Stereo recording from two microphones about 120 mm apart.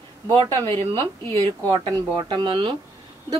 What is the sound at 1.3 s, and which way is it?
A woman's voice, 40° right (ahead or behind).